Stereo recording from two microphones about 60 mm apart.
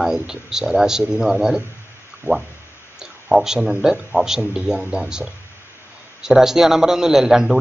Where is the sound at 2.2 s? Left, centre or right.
Left.